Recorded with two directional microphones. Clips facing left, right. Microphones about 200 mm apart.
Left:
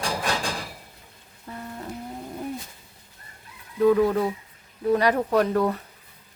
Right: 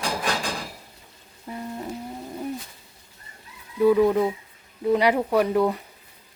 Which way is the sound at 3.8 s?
10° right (ahead or behind).